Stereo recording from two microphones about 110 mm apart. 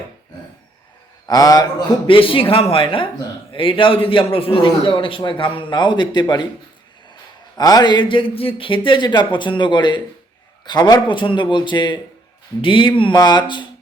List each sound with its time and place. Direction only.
1.3 s a man's voice: 35° left (ahead or behind)
2.0 s a man's voice: 55° left (ahead or behind)
7.5 s a man's voice: 35° left (ahead or behind)